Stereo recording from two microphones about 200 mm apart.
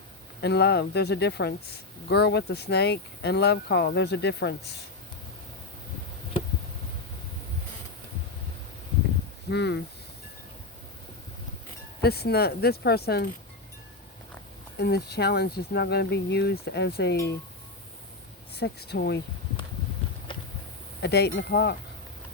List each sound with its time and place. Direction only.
0.4 s speech: 55° left (ahead or behind)
9.5 s speech: 60° left (ahead or behind)
12.0 s speech: 50° left (ahead or behind)
14.8 s speech: 55° left (ahead or behind)
18.5 s speech: 55° left (ahead or behind)
21.0 s speech: 55° left (ahead or behind)